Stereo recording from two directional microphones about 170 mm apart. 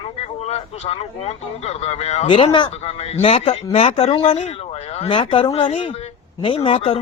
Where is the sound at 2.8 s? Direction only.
40° left (ahead or behind).